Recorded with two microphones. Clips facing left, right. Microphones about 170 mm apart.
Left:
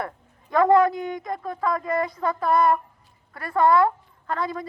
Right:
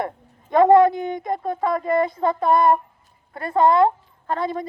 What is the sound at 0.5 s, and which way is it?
A woman's voice, 25° right (ahead or behind).